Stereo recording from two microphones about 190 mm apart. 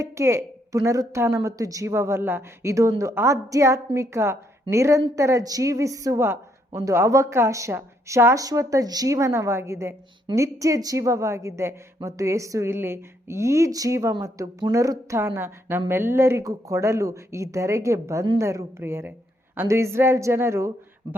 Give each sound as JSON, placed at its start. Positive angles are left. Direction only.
{"t": 0.0, "sound": "a woman's voice", "side_deg": -15}